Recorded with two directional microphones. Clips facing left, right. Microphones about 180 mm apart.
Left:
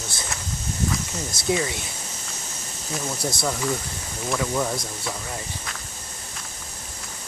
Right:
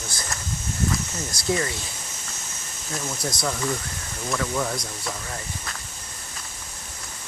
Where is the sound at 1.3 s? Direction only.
25° left (ahead or behind).